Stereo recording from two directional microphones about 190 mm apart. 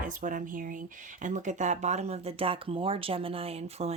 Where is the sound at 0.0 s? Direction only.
45° right (ahead or behind).